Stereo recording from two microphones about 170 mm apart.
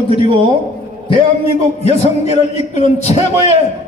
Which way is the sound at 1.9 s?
40° left (ahead or behind).